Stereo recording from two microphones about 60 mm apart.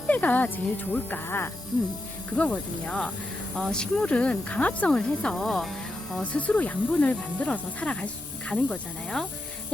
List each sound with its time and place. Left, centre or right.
0.1 s speech: left
2.3 s speech: centre
6.3 s speech: left